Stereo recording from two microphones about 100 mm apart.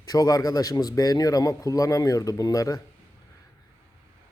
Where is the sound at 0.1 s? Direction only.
35° left (ahead or behind).